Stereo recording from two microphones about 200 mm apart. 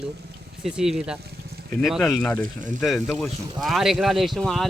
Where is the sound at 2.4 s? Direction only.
40° right (ahead or behind).